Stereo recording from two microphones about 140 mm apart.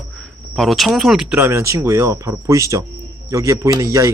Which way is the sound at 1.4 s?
20° right (ahead or behind).